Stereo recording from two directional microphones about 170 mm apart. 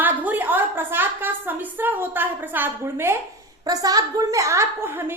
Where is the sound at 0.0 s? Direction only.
10° right (ahead or behind).